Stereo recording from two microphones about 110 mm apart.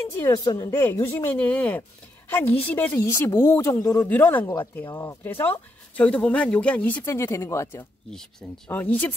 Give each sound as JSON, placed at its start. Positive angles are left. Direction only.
{"t": 0.2, "sound": "a woman's voice", "side_deg": 35}
{"t": 1.1, "sound": "speech", "side_deg": 15}
{"t": 4.1, "sound": "speech", "side_deg": 15}
{"t": 8.1, "sound": "speech", "side_deg": 5}
{"t": 8.6, "sound": "speech", "side_deg": 15}